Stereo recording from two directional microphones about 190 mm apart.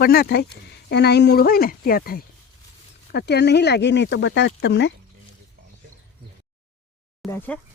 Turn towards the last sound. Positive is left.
turn(degrees=10)  # may be behind; listen again after turning